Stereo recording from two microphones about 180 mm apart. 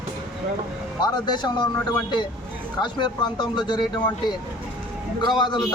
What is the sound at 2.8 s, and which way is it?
A man's voice, 25° left (ahead or behind).